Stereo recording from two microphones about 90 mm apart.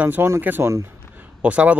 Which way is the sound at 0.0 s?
20° right (ahead or behind).